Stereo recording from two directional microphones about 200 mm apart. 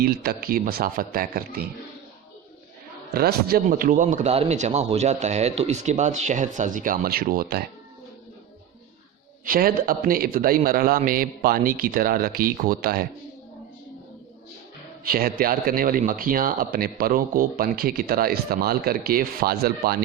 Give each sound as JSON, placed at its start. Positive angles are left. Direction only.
{"t": 0.0, "sound": "a man's voice", "side_deg": -50}
{"t": 3.1, "sound": "speech", "side_deg": -50}
{"t": 9.5, "sound": "a man's voice", "side_deg": -45}
{"t": 15.0, "sound": "a man's voice", "side_deg": -45}